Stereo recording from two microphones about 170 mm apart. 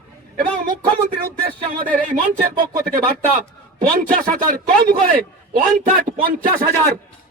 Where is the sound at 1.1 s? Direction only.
55° right (ahead or behind).